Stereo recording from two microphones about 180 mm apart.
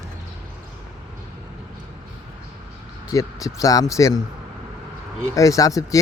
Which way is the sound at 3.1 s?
20° left (ahead or behind).